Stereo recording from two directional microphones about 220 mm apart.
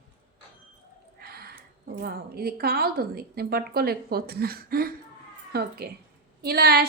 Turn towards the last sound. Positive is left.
turn(degrees=-45)  # may be behind; listen again after turning